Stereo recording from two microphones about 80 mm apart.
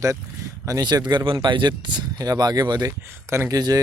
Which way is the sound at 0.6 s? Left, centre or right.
Right.